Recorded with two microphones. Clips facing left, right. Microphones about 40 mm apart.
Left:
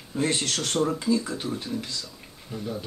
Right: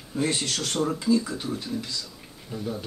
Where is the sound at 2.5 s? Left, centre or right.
Centre.